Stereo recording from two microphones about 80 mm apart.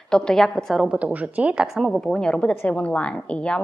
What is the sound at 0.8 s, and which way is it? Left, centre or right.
Speech, centre.